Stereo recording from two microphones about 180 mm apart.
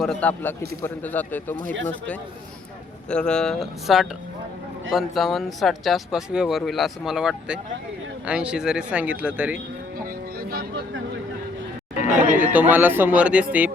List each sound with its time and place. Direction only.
0.0 s speech: 5° left (ahead or behind)
3.1 s speech: 5° left (ahead or behind)
10.5 s a sound: 60° right (ahead or behind)
12.4 s speech: 10° right (ahead or behind)